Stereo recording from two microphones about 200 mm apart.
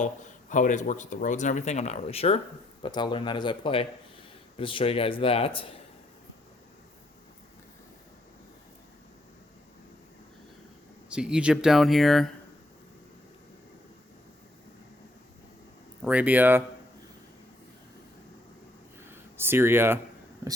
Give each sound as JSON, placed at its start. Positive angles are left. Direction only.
{"t": 0.5, "sound": "a man's voice", "side_deg": 40}
{"t": 11.1, "sound": "speech", "side_deg": -5}
{"t": 16.0, "sound": "speech", "side_deg": -5}
{"t": 19.0, "sound": "a sound", "side_deg": -10}